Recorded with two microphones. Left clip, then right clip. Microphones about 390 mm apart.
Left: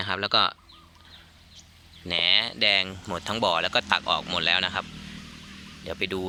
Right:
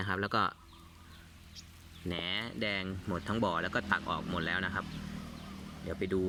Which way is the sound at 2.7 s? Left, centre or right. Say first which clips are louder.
Left 11 dB; centre.